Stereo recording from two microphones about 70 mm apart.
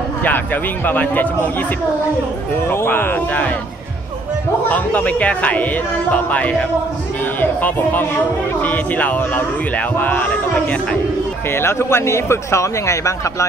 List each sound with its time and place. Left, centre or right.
0.8 s speech: left
2.7 s speech: left
4.6 s speech: left
11.5 s speech: left